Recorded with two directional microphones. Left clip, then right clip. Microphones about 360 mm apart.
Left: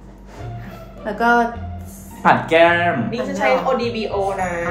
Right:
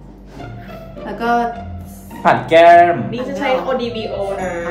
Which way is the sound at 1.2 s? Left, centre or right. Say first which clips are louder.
Left 1 dB; centre.